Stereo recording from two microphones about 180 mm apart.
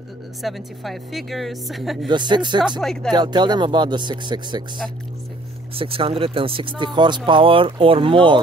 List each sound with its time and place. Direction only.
0.4 s a woman's voice: centre (ahead or behind)
2.0 s speech: 25° right (ahead or behind)
2.8 s a woman's voice: centre (ahead or behind)
3.1 s speech: 25° right (ahead or behind)
5.8 s speech: 30° right (ahead or behind)